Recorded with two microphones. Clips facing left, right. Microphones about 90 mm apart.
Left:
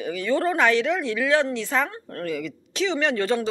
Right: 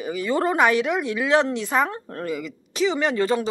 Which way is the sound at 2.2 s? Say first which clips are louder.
Left 1 dB; 5° right (ahead or behind).